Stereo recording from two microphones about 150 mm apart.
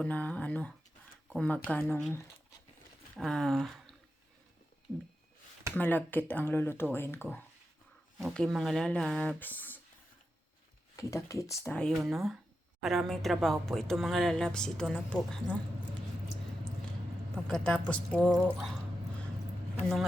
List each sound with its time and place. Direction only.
0.0 s speech: 10° left (ahead or behind)
3.2 s speech: 5° left (ahead or behind)
5.7 s speech: 10° left (ahead or behind)
8.2 s speech: 5° left (ahead or behind)
10.9 s speech: 20° left (ahead or behind)
11.8 s speech: centre (ahead or behind)
17.3 s speech: 5° left (ahead or behind)